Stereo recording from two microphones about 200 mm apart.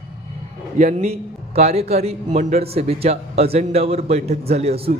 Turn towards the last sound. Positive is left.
turn(degrees=-30)  # may be behind; listen again after turning